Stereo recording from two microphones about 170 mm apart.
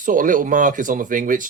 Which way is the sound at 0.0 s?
50° right (ahead or behind).